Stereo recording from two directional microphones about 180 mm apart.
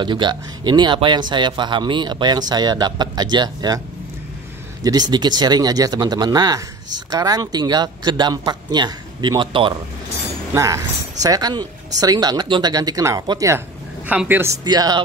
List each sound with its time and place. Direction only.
0.0 s speech: 25° right (ahead or behind)
5.1 s speech: 25° right (ahead or behind)
10.5 s speech: 15° right (ahead or behind)